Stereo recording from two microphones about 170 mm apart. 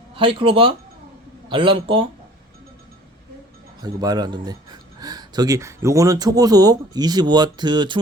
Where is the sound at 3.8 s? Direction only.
25° right (ahead or behind).